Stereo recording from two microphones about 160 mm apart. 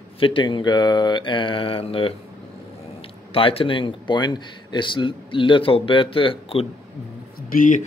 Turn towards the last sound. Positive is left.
turn(degrees=50)  # may be behind; listen again after turning